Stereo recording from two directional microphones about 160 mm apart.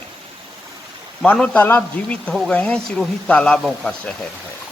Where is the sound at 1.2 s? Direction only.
10° left (ahead or behind).